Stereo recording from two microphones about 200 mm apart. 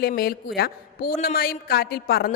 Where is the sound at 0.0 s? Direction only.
50° left (ahead or behind).